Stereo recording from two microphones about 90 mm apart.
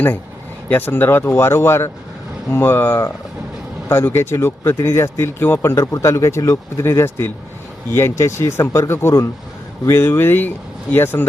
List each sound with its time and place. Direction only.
0.7 s speech: 20° left (ahead or behind)